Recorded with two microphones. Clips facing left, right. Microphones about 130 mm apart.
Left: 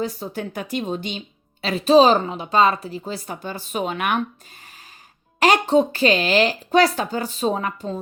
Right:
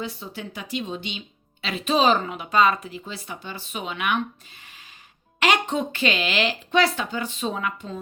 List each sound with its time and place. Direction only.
0.0 s speech: 40° left (ahead or behind)
5.4 s speech: 35° left (ahead or behind)